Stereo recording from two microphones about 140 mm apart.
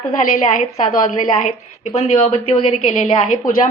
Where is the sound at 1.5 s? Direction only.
55° left (ahead or behind).